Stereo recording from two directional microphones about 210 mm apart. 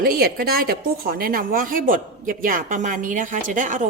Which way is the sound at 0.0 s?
45° right (ahead or behind).